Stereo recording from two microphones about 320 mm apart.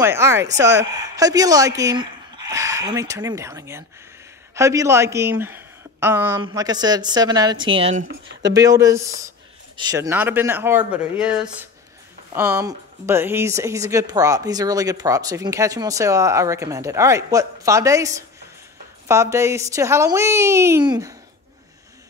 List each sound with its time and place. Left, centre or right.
0.0 s speech: centre